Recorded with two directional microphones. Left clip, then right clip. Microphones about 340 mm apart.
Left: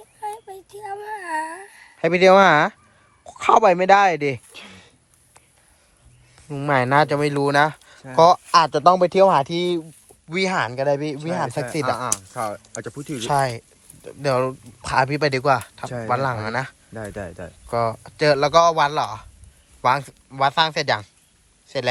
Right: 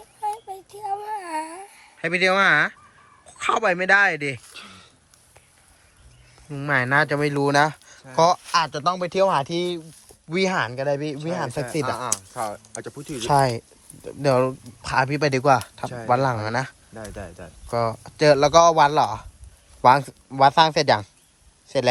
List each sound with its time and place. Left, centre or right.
0.2 s a sound: centre
2.0 s speech: centre
4.5 s a sound: left
6.5 s speech: centre
11.9 s speech: left
13.1 s speech: centre
16.9 s speech: left
17.7 s speech: centre